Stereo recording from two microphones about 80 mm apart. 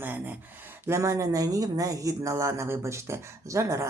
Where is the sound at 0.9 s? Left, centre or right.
Right.